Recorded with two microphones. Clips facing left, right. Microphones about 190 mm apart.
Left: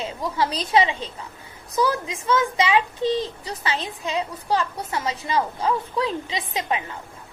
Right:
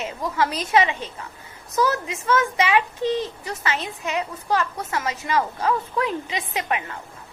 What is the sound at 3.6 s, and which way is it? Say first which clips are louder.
A woman's voice: even; 30° left (ahead or behind).